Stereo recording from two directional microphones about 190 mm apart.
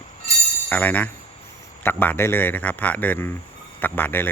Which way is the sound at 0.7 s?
10° left (ahead or behind).